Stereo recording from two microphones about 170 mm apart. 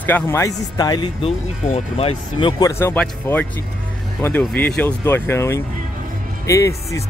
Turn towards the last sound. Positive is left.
turn(degrees=15)  # may be behind; listen again after turning